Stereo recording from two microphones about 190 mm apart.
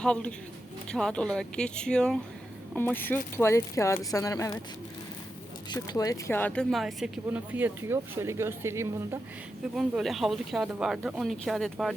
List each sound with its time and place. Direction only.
0.0 s speech: 5° left (ahead or behind)
5.7 s speech: 20° left (ahead or behind); by 8.9 s 15° right (ahead or behind)
9.7 s speech: centre (ahead or behind)